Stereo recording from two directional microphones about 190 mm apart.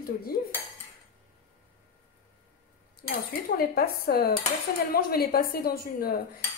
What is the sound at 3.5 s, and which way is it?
A woman's voice, 50° left (ahead or behind).